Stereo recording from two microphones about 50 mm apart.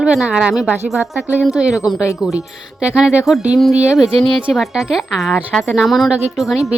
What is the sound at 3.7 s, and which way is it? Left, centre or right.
Speech, right.